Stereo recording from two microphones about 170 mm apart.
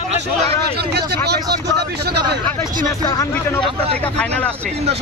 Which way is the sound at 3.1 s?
20° left (ahead or behind).